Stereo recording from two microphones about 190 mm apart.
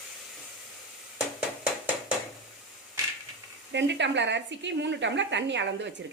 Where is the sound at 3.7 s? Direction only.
70° right (ahead or behind).